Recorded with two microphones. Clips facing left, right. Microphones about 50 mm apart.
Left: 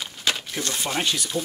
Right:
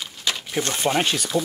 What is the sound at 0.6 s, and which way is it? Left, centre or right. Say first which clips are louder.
Speech: right 4 dB; right.